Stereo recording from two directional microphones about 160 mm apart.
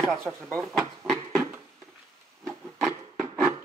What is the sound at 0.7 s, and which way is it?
Speech, 5° left (ahead or behind).